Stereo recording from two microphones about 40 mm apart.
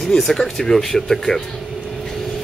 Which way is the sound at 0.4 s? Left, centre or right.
Centre.